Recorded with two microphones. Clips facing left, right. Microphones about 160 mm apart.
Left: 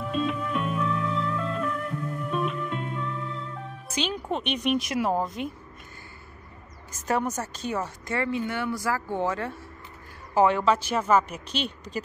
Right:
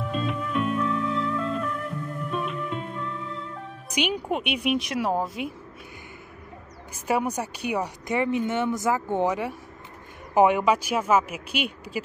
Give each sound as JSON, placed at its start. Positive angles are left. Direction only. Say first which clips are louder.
{"t": 0.0, "sound": "music", "louder": "left 1 dB", "side_deg": 0}
{"t": 3.9, "sound": "speech", "louder": "right 3 dB", "side_deg": -15}
{"t": 6.9, "sound": "speech", "louder": "right 1 dB", "side_deg": -10}